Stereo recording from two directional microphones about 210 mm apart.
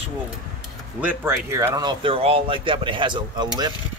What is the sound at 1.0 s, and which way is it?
Speech, 10° right (ahead or behind).